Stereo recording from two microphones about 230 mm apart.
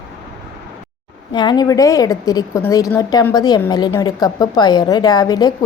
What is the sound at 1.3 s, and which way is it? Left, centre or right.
A woman's voice, centre.